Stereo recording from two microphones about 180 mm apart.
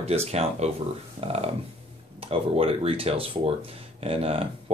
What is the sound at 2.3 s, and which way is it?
Speech, 30° right (ahead or behind).